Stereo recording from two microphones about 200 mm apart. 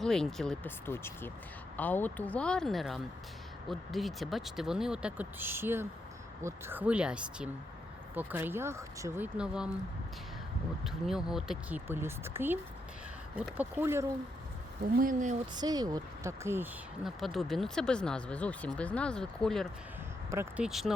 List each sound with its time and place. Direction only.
0.0 s speech: centre (ahead or behind)
10.8 s speech: centre (ahead or behind)
14.9 s speech: 40° right (ahead or behind)
15.5 s speech: 20° right (ahead or behind)
17.0 s speech: centre (ahead or behind)
20.3 s speech: 10° right (ahead or behind)
20.7 s speech: centre (ahead or behind)